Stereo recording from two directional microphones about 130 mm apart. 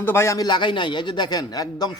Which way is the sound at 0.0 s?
20° left (ahead or behind).